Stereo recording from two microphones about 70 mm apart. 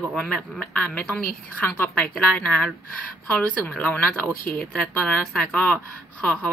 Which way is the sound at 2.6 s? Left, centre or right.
Centre.